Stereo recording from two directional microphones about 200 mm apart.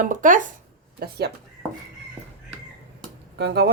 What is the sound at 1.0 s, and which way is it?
Speech, 50° right (ahead or behind).